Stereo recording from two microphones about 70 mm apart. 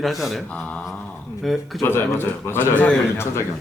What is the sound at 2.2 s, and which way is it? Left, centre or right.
Speech, left.